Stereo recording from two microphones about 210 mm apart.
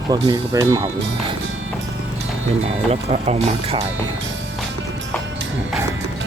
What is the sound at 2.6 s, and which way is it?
Speech, 30° right (ahead or behind).